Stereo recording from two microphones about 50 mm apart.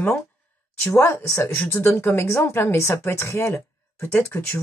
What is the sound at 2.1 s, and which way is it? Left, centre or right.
A woman's voice, left.